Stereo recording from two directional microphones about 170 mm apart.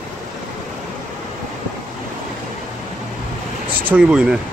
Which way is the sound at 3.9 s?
5° right (ahead or behind).